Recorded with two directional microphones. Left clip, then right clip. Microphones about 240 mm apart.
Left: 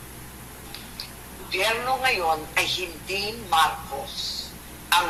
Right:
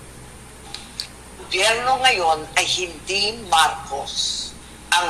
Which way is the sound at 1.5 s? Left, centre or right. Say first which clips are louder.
Right 6 dB; centre.